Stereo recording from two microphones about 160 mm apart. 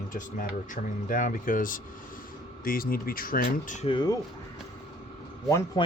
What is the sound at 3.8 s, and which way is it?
Speech, 30° left (ahead or behind).